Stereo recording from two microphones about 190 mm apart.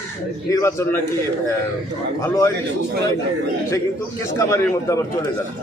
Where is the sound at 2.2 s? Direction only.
15° left (ahead or behind).